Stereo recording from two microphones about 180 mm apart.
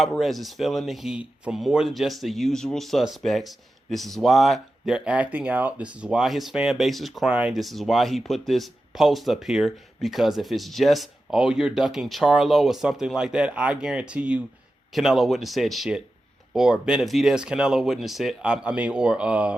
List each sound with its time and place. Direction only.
0.0 s speech: centre (ahead or behind)